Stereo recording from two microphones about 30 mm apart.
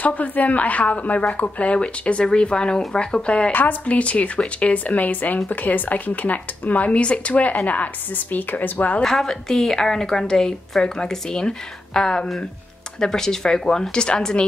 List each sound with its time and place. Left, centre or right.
0.0 s a woman's voice: left
2.3 s speech: left
3.8 s a woman's voice: left
7.0 s speech: left
7.6 s speech: left
9.0 s a woman's voice: centre
13.9 s speech: left